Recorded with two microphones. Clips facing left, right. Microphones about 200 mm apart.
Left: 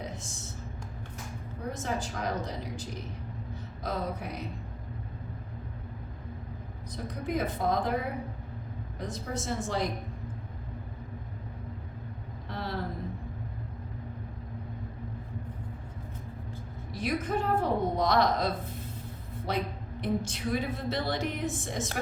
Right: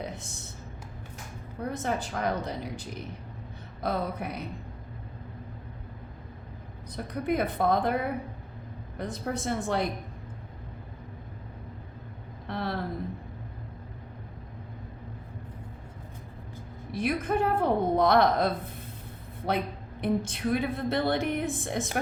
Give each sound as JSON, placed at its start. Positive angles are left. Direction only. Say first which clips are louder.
{"t": 0.0, "sound": "a sound", "louder": "right 2 dB", "side_deg": -60}
{"t": 1.7, "sound": "a woman's voice", "louder": "right 3 dB", "side_deg": -60}
{"t": 3.8, "sound": "a woman's voice", "louder": "right 3 dB", "side_deg": -60}
{"t": 6.9, "sound": "a woman's voice", "louder": "right 4 dB", "side_deg": -60}
{"t": 9.0, "sound": "a woman's voice", "louder": "right 3 dB", "side_deg": -60}
{"t": 12.5, "sound": "a sound", "louder": "right 5 dB", "side_deg": -60}
{"t": 16.9, "sound": "a woman's voice", "louder": "right 3 dB", "side_deg": -55}